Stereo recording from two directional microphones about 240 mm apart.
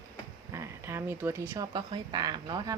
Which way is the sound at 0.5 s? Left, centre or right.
Centre.